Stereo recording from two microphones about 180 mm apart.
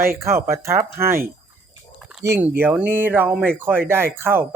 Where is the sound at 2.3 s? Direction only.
10° right (ahead or behind).